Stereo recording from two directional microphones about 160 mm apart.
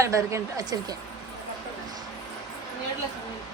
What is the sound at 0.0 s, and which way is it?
Speech, 20° right (ahead or behind).